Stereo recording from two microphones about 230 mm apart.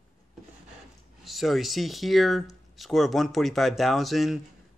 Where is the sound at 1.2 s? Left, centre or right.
Centre.